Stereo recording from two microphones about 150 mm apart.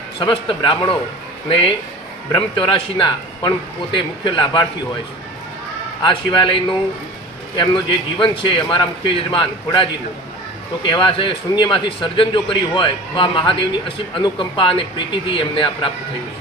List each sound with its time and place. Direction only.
0.2 s a man's voice: 35° left (ahead or behind)
6.0 s a man's voice: 30° left (ahead or behind)
8.2 s a man's voice: 35° left (ahead or behind)